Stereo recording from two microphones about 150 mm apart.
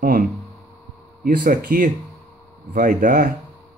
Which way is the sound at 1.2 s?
65° right (ahead or behind).